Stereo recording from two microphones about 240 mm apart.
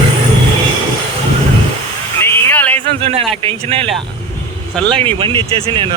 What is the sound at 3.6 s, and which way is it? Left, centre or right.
Speech, right.